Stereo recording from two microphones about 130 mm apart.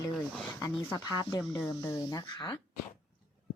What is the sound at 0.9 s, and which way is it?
A woman's voice, 25° left (ahead or behind).